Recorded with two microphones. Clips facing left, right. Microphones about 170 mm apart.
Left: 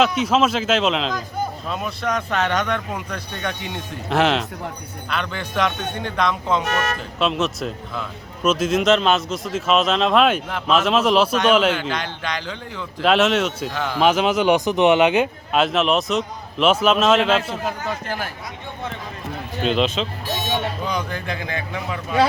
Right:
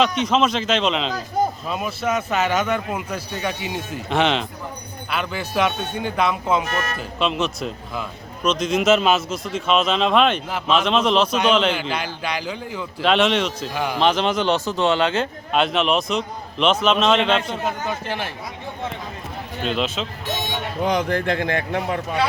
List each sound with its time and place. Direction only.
0.0 s a man's voice: 5° left (ahead or behind)
11.7 s speech: 10° right (ahead or behind)
13.1 s a man's voice: 5° left (ahead or behind)
13.7 s speech: 10° right (ahead or behind)
14.0 s speech: 5° left (ahead or behind)
15.5 s a man's voice: centre (ahead or behind)
19.6 s a man's voice: 5° right (ahead or behind)
20.8 s a man's voice: 60° right (ahead or behind)